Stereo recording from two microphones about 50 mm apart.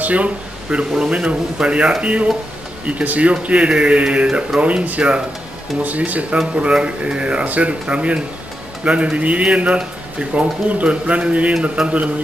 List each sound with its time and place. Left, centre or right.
0.0 s speech: right
6.3 s speech: centre
11.8 s a man's voice: centre